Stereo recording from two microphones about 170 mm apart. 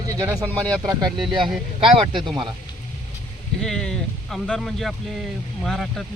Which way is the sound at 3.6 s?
5° left (ahead or behind).